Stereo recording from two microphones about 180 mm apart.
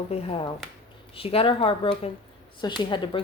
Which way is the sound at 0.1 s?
30° left (ahead or behind).